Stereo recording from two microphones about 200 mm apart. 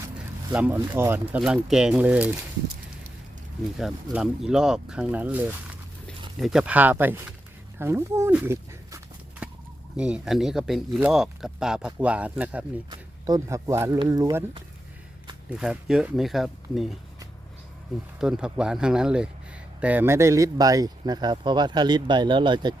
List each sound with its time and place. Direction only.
0.5 s speech: 10° right (ahead or behind)
3.8 s speech: centre (ahead or behind)
10.0 s speech: 5° right (ahead or behind)
12.9 s speech: 20° right (ahead or behind)
15.4 s speech: 5° right (ahead or behind)
18.2 s speech: 5° right (ahead or behind); by 22.7 s 25° right (ahead or behind)